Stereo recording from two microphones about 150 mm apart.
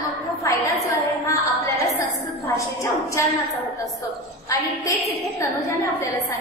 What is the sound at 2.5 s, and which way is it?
Speech, 20° left (ahead or behind).